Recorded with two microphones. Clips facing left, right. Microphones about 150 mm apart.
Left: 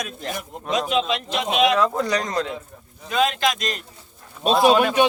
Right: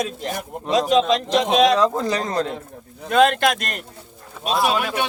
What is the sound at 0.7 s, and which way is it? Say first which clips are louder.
A man's voice: right 5 dB; 35° right (ahead or behind).